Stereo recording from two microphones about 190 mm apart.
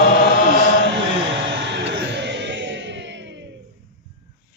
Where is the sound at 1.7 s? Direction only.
65° right (ahead or behind).